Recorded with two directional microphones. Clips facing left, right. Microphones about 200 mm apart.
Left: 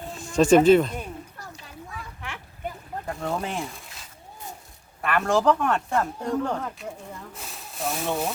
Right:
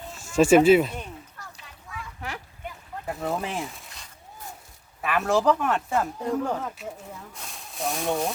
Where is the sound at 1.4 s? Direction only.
35° left (ahead or behind).